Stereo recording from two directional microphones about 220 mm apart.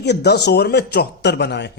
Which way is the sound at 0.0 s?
50° left (ahead or behind).